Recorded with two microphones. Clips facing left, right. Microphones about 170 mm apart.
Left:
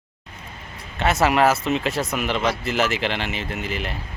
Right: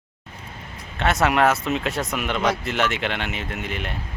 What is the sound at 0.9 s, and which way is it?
Speech, centre (ahead or behind).